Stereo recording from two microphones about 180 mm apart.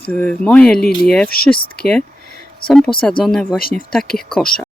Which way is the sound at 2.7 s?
5° left (ahead or behind).